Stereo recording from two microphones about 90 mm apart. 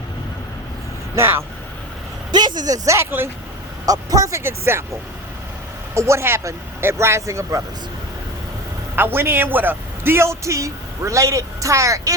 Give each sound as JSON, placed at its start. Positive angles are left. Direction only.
{"t": 1.1, "sound": "speech", "side_deg": -30}
{"t": 2.3, "sound": "a man's voice", "side_deg": -50}
{"t": 3.8, "sound": "a man's voice", "side_deg": -40}
{"t": 5.9, "sound": "a man's voice", "side_deg": -30}
{"t": 9.0, "sound": "a man's voice", "side_deg": -25}